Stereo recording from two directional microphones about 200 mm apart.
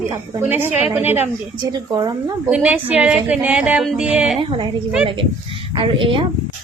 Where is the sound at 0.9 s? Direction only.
10° right (ahead or behind).